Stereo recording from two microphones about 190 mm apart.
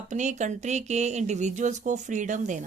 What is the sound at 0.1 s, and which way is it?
Speech, 40° right (ahead or behind).